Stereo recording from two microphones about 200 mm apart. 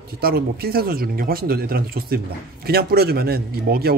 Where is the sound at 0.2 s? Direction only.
50° right (ahead or behind).